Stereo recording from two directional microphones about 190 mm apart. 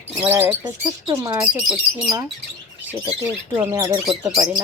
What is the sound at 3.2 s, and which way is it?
Speech, 15° right (ahead or behind).